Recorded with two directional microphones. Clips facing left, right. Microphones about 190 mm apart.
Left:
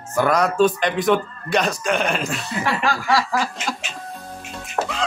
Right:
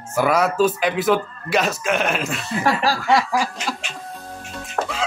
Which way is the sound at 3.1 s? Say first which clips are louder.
Right 3 dB; 20° right (ahead or behind).